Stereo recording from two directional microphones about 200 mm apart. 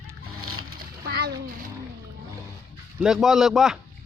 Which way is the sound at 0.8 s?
50° right (ahead or behind).